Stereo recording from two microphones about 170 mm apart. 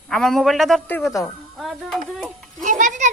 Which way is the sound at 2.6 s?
45° right (ahead or behind).